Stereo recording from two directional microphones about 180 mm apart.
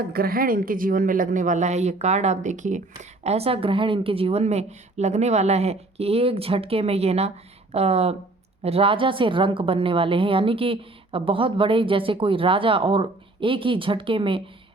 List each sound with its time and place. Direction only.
0.1 s a woman's voice: 55° right (ahead or behind); by 14.5 s 30° right (ahead or behind)